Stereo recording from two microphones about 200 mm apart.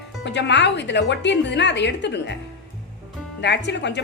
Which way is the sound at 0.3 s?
60° left (ahead or behind).